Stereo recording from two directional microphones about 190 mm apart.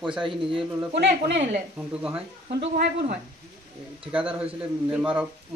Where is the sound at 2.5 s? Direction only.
60° right (ahead or behind).